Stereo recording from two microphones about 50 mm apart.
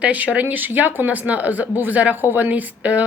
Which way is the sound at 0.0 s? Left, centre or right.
Right.